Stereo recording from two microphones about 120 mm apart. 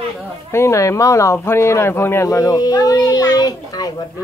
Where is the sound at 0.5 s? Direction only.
25° left (ahead or behind).